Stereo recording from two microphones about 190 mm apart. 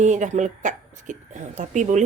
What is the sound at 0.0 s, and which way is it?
Speech, 40° right (ahead or behind).